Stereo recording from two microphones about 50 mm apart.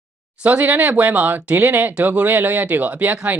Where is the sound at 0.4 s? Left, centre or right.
Right.